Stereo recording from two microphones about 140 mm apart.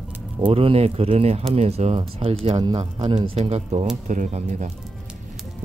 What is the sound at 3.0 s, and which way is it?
Speech, 45° right (ahead or behind).